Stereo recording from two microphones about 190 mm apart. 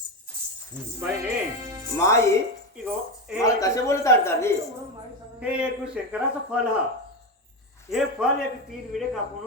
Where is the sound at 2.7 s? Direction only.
5° right (ahead or behind).